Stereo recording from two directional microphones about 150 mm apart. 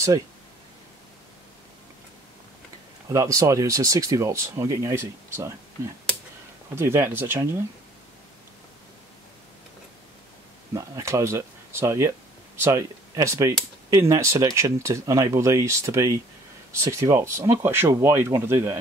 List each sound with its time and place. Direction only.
3.1 s speech: 20° right (ahead or behind)
6.7 s speech: 15° right (ahead or behind)
10.7 s speech: 20° right (ahead or behind)